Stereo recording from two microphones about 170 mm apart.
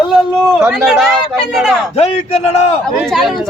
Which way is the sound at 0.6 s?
5° right (ahead or behind).